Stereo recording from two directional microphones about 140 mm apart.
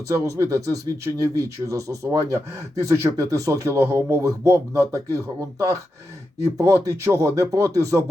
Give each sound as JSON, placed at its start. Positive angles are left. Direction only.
{"t": 0.1, "sound": "speech", "side_deg": -25}